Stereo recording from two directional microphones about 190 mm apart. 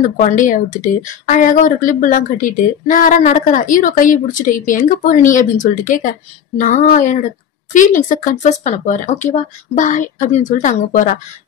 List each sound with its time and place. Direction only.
0.2 s a woman's voice: 40° left (ahead or behind)